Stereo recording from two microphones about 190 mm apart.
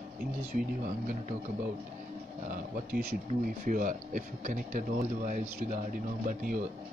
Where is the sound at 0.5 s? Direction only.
50° right (ahead or behind).